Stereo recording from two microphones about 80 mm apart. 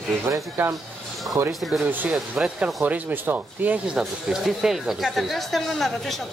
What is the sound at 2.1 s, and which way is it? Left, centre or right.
Speech, centre.